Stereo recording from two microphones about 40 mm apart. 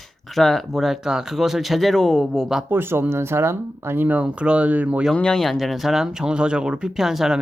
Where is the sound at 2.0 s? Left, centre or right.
Centre.